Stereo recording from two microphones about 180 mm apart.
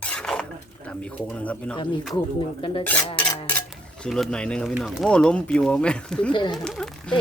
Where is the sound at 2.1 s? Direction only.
25° left (ahead or behind).